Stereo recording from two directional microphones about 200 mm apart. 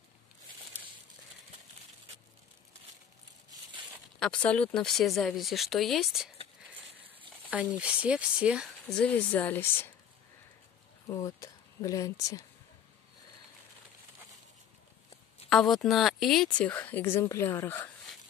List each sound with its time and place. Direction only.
4.2 s speech: 5° left (ahead or behind)
7.4 s speech: 5° right (ahead or behind); by 9.9 s 10° left (ahead or behind)
11.1 s a woman's voice: 15° left (ahead or behind)
15.5 s a woman's voice: centre (ahead or behind)